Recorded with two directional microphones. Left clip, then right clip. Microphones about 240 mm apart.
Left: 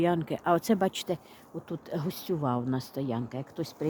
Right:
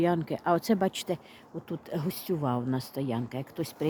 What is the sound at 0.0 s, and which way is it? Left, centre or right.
Speech, centre.